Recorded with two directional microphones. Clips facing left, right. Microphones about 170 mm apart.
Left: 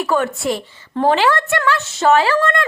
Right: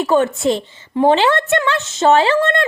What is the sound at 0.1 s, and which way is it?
Speech, 25° right (ahead or behind).